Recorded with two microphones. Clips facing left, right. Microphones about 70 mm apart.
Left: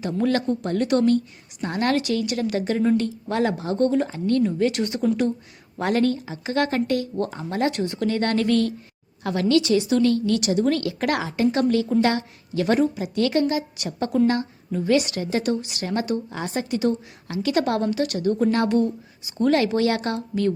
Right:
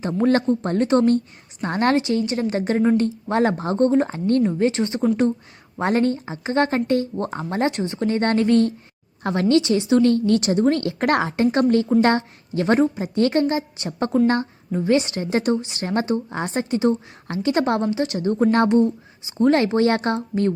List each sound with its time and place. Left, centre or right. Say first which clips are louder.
0.0 s a woman's voice: right 3 dB; right